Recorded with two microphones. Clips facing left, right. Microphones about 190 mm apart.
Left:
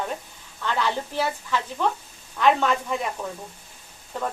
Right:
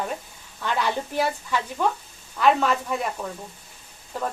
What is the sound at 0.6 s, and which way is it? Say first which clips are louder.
Speech: even; 15° right (ahead or behind).